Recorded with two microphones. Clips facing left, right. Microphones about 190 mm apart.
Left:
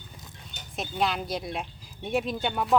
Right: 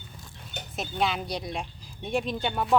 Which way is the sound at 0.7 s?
Centre (ahead or behind).